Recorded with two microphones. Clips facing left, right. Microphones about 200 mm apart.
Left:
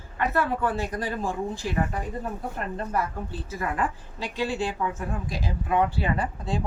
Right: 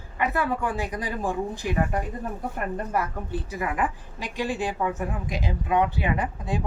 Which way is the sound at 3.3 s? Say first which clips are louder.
Right 2 dB; 15° right (ahead or behind).